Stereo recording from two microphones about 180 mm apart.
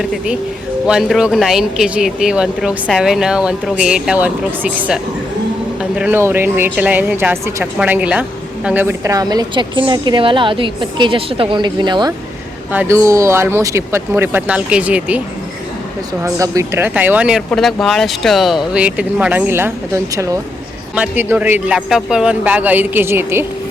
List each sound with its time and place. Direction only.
0.0 s speech: centre (ahead or behind)
6.0 s a woman's voice: 10° right (ahead or behind)
12.7 s speech: 10° right (ahead or behind)
16.2 s speech: 20° right (ahead or behind)